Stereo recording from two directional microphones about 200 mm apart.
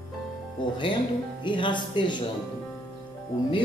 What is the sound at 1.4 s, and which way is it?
Speech, 25° left (ahead or behind).